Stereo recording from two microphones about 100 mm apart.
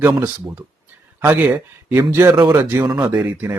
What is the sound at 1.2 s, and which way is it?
A man's voice, 20° right (ahead or behind).